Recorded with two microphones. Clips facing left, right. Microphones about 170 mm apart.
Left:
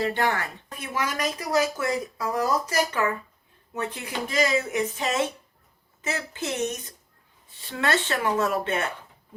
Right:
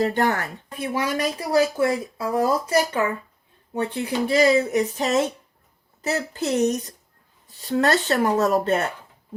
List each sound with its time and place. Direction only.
0.0 s speech: 45° right (ahead or behind)
0.7 s speech: 30° right (ahead or behind)